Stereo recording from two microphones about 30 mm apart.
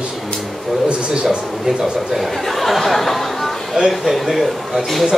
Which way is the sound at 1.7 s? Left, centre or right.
Centre.